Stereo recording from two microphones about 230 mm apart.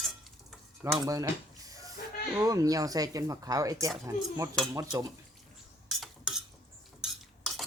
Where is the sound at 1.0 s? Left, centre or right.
Centre.